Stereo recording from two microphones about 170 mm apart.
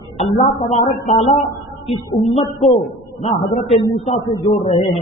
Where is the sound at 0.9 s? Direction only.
45° left (ahead or behind).